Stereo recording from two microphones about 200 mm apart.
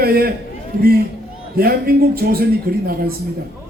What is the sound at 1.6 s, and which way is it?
A man's voice, 50° right (ahead or behind).